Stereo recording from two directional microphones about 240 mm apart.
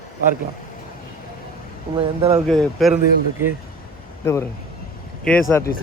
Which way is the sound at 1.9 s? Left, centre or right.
Right.